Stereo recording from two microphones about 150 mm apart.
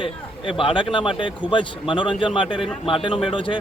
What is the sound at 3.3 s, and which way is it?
Speech, 35° left (ahead or behind).